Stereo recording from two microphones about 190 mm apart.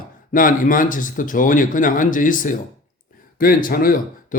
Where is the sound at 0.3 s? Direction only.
45° left (ahead or behind).